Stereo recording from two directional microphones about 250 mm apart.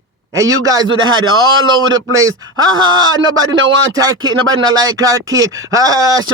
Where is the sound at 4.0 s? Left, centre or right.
Centre.